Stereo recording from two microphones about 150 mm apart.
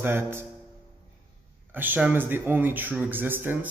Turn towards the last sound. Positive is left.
turn(degrees=-15)  # may be behind; listen again after turning